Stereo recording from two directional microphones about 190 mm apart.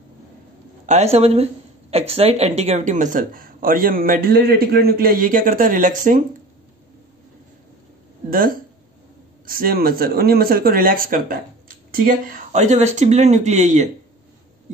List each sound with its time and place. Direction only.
0.8 s speech: 35° right (ahead or behind)
9.5 s speech: 50° right (ahead or behind)